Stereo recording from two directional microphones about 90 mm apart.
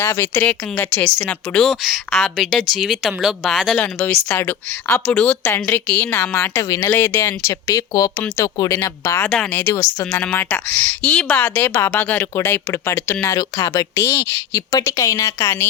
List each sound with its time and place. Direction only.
0.0 s speech: 25° left (ahead or behind)
0.8 s a woman's voice: 10° left (ahead or behind)
3.8 s a woman's voice: 15° left (ahead or behind)
5.4 s speech: 30° left (ahead or behind)
5.9 s a woman's voice: 15° left (ahead or behind)
6.3 s speech: 30° left (ahead or behind)
6.9 s speech: 25° left (ahead or behind)
9.2 s a woman's voice: 15° left (ahead or behind)
9.6 s a woman's voice: 30° left (ahead or behind)